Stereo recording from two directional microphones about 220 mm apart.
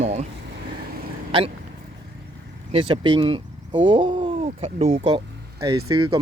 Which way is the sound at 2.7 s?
25° right (ahead or behind).